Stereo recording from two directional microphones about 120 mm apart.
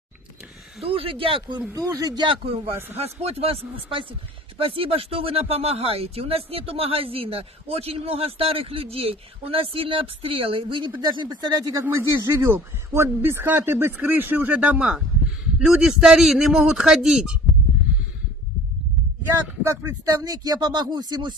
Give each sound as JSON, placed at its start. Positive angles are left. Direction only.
{"t": 0.8, "sound": "speech", "side_deg": -50}
{"t": 1.6, "sound": "speech", "side_deg": -25}
{"t": 3.0, "sound": "speech", "side_deg": -60}
{"t": 11.7, "sound": "a man's voice", "side_deg": -20}
{"t": 19.6, "sound": "speech", "side_deg": -30}